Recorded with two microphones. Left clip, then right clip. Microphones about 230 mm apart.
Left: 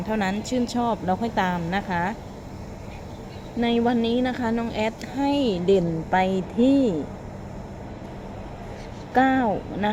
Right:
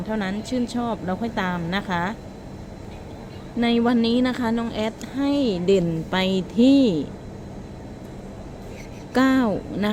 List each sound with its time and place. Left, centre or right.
0.1 s a woman's voice: centre
3.6 s a woman's voice: centre
9.1 s speech: right